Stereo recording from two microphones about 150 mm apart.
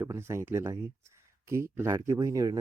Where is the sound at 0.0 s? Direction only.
20° right (ahead or behind).